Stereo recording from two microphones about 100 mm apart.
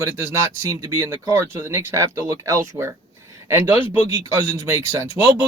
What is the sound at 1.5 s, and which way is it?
Speech, 25° right (ahead or behind).